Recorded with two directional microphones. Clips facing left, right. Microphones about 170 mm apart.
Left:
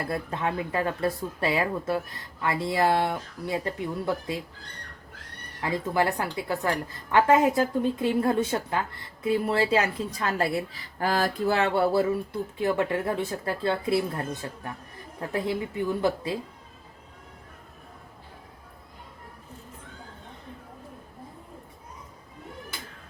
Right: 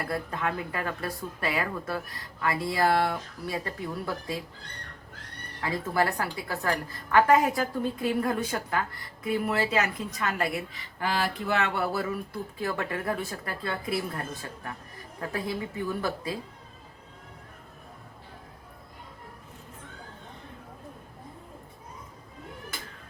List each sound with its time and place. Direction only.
0.1 s a woman's voice: 25° left (ahead or behind)
5.7 s a woman's voice: 20° left (ahead or behind)